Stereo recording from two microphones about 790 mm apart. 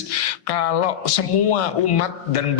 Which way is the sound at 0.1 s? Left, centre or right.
Left.